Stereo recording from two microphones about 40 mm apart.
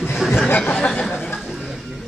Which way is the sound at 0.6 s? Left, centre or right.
Left.